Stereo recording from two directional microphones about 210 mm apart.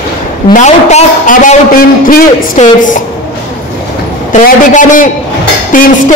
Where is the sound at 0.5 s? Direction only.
35° left (ahead or behind).